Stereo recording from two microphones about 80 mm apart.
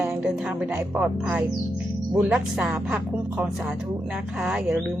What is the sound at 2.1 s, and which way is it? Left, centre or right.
Speech, centre.